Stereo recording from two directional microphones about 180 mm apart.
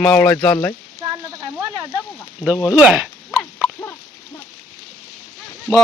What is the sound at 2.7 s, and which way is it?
Speech, 10° right (ahead or behind).